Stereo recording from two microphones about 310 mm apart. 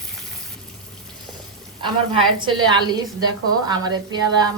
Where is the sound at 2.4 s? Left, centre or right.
Centre.